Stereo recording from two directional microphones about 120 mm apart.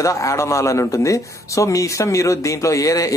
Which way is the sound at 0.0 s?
25° left (ahead or behind).